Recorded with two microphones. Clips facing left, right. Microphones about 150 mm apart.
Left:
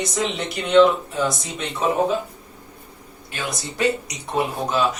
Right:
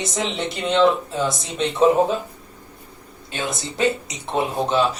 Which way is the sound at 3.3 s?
25° right (ahead or behind).